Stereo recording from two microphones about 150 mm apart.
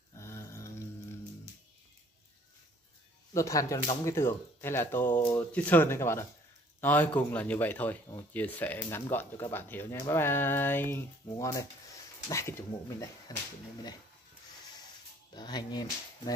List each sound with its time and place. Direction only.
0.1 s a sound: 20° left (ahead or behind)
3.3 s speech: 20° left (ahead or behind)
15.3 s speech: 30° left (ahead or behind)